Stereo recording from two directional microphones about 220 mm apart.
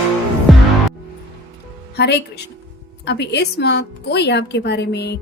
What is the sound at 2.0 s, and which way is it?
Speech, 50° left (ahead or behind).